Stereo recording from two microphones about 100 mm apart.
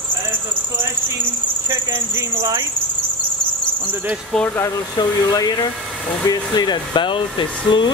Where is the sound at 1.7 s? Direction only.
25° right (ahead or behind).